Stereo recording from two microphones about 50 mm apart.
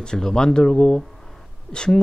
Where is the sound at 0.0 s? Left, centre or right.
Centre.